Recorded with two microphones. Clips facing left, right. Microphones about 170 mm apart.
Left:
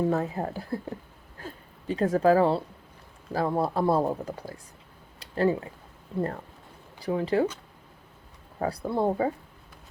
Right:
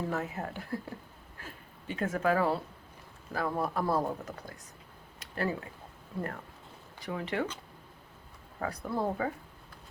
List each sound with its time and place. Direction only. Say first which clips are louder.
0.1 s speech: left 7 dB; 35° left (ahead or behind)
1.4 s a sound: left 7 dB; 35° left (ahead or behind)
3.3 s speech: left 6 dB; 30° left (ahead or behind)
5.2 s a sound: left 9 dB; 30° left (ahead or behind)
7.0 s speech: left 8 dB; 35° left (ahead or behind)
8.5 s speech: left 6 dB; 30° left (ahead or behind)